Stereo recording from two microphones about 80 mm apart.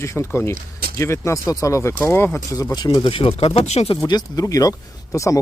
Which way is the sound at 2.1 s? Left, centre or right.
Left.